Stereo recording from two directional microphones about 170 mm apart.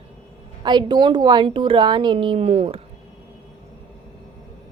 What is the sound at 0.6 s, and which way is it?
A woman's voice, 25° right (ahead or behind).